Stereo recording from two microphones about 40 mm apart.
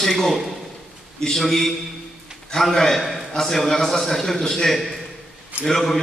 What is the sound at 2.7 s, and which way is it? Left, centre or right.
A man's voice, centre.